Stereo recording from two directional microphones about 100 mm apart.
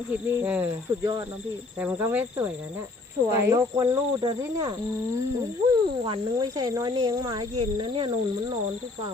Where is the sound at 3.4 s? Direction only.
30° right (ahead or behind).